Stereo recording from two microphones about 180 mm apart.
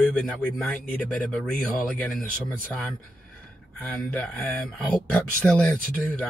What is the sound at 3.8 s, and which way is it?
Speech, 5° left (ahead or behind).